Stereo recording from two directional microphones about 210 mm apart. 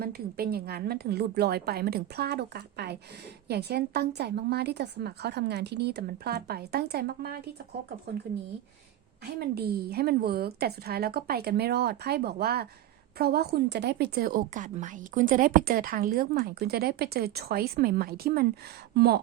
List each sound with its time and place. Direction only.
0.0 s a woman's voice: 50° right (ahead or behind)
9.4 s a woman's voice: 50° right (ahead or behind)